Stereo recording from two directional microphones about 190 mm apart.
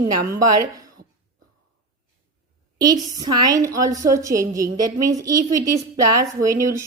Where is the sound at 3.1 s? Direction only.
20° right (ahead or behind).